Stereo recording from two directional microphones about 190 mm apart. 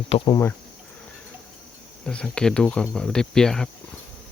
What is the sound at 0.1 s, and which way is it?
Speech, 30° left (ahead or behind).